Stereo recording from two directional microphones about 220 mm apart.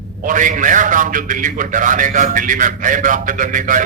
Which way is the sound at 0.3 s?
35° right (ahead or behind).